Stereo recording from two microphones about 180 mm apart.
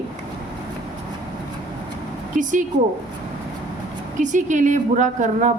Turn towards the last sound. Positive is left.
turn(degrees=-45)  # may be behind; listen again after turning